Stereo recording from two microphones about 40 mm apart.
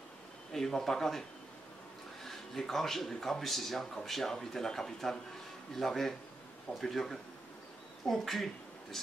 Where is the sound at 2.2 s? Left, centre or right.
Centre.